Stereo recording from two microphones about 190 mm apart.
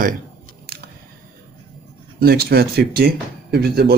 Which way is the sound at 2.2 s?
55° right (ahead or behind).